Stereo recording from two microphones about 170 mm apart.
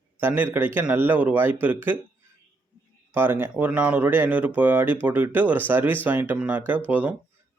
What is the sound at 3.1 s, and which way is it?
Speech, 10° right (ahead or behind).